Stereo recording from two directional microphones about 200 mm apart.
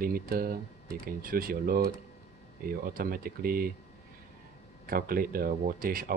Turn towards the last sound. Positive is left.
turn(degrees=-45)  # may be behind; listen again after turning